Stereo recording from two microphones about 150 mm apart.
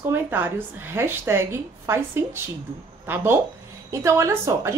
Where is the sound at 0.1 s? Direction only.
15° right (ahead or behind).